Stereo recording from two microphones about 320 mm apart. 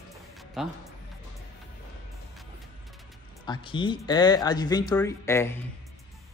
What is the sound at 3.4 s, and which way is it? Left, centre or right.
Speech, centre.